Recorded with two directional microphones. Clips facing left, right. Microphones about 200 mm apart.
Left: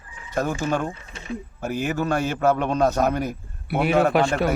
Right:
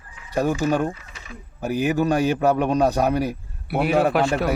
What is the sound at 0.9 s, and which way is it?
Speech, 30° left (ahead or behind).